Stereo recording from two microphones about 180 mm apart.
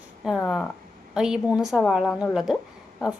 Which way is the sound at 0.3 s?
Centre (ahead or behind).